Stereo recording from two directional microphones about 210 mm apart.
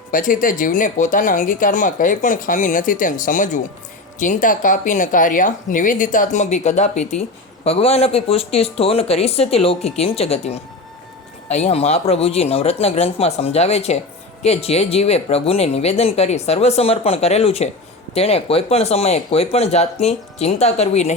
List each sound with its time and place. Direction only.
0.1 s speech: 40° left (ahead or behind)